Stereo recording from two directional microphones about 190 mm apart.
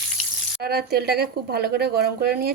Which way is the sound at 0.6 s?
55° right (ahead or behind).